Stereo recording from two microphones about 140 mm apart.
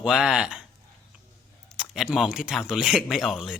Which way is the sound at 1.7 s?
5° right (ahead or behind).